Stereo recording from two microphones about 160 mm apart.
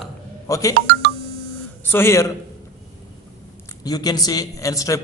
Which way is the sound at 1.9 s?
15° left (ahead or behind).